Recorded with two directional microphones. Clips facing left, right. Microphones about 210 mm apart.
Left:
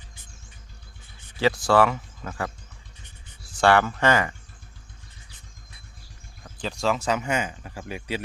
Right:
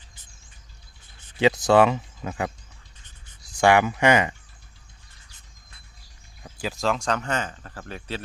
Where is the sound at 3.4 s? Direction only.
15° right (ahead or behind).